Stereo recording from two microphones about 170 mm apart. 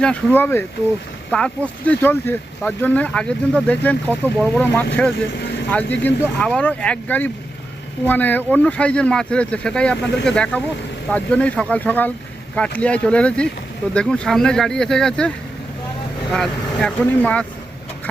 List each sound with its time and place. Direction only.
0.0 s speech: 10° left (ahead or behind)
5.4 s vehicle: 90° left
5.7 s speech: 10° left (ahead or behind)
16.3 s speech: 5° left (ahead or behind)